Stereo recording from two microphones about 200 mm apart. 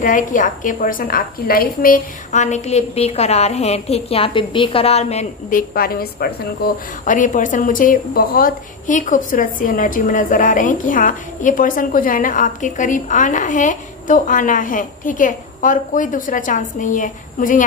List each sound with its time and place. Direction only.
0.0 s a woman's voice: 40° left (ahead or behind)